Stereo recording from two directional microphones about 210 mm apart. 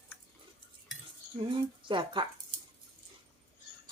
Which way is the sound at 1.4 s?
25° right (ahead or behind).